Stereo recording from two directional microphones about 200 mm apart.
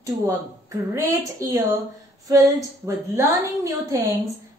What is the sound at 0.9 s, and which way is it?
A woman's voice, 15° right (ahead or behind).